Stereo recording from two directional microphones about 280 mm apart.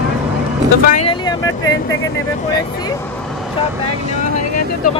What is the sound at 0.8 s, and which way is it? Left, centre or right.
Speech, left.